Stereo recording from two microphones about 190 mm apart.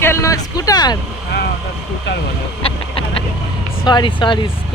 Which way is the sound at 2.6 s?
30° left (ahead or behind).